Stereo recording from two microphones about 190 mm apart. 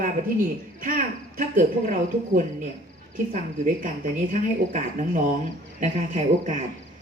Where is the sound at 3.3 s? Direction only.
40° right (ahead or behind).